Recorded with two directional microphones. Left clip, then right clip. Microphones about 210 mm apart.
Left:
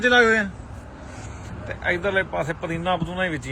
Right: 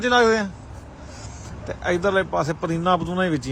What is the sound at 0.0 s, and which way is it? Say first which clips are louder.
Speech: left 1 dB; 10° right (ahead or behind).